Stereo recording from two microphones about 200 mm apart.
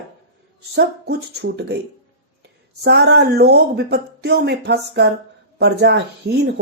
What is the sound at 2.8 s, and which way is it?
Speech, 55° right (ahead or behind).